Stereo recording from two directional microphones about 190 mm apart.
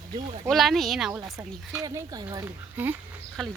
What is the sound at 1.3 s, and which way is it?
Speech, 15° right (ahead or behind).